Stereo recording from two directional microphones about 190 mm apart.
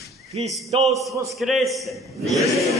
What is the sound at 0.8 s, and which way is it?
A man's voice, centre (ahead or behind).